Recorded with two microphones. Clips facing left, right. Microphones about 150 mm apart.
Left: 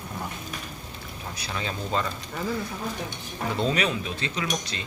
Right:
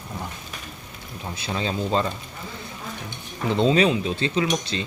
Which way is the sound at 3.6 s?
25° right (ahead or behind).